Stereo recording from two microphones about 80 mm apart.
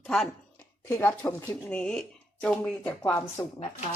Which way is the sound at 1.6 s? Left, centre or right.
Centre.